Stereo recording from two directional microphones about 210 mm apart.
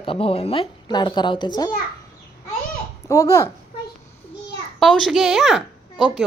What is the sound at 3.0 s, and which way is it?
Speech, 15° left (ahead or behind).